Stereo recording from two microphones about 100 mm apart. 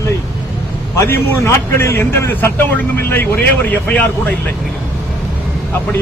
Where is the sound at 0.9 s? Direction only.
30° left (ahead or behind); by 4.3 s 15° left (ahead or behind).